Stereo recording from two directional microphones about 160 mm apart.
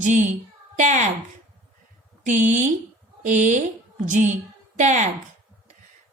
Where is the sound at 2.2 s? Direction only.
50° right (ahead or behind).